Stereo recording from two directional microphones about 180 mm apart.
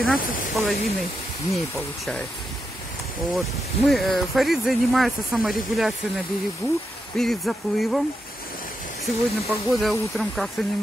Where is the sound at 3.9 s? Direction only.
Centre (ahead or behind).